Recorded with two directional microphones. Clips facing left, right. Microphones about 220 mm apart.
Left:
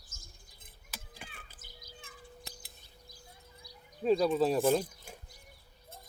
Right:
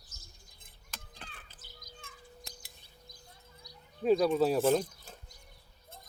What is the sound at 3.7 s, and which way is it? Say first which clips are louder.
Bird: right 1 dB; 30° left (ahead or behind).